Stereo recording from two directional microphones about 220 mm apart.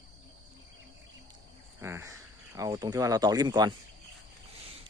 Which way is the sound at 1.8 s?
10° right (ahead or behind).